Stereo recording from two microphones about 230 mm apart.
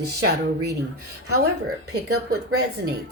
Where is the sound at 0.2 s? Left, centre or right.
Right.